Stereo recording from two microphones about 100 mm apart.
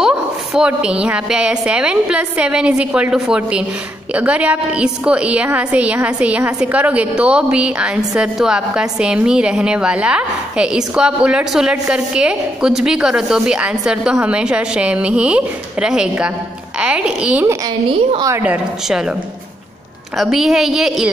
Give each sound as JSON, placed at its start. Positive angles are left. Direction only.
{"t": 0.0, "sound": "a woman's voice", "side_deg": -10}
{"t": 20.2, "sound": "a woman's voice", "side_deg": -5}